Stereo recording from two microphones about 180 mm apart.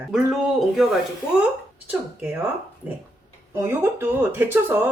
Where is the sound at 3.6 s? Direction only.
15° right (ahead or behind).